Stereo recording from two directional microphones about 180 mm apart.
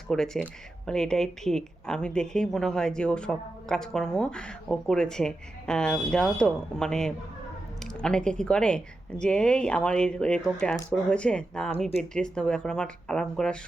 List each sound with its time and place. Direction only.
0.1 s speech: 5° left (ahead or behind)